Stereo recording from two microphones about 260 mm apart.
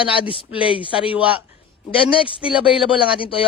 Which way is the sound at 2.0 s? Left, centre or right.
Left.